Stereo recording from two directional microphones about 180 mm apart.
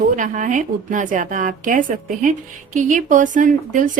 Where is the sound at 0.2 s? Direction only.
45° right (ahead or behind).